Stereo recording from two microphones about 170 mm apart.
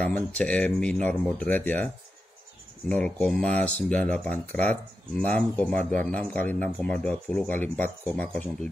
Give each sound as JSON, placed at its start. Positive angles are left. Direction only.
{"t": 0.0, "sound": "speech", "side_deg": 5}
{"t": 2.9, "sound": "speech", "side_deg": 5}